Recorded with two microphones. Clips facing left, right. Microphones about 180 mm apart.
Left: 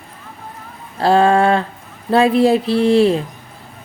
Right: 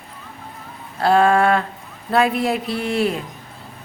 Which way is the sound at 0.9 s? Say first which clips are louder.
Left 2 dB; 30° left (ahead or behind).